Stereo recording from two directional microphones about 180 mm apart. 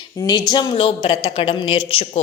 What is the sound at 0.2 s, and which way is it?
A woman's voice, 25° left (ahead or behind).